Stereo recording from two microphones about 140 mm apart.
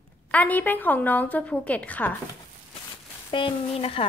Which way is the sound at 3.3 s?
40° left (ahead or behind).